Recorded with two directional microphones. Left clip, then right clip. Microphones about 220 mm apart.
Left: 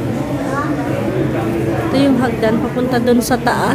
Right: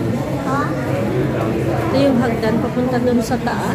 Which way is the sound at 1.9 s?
15° left (ahead or behind).